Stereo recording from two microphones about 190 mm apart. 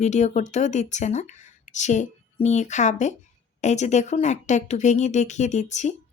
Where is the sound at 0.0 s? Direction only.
40° left (ahead or behind).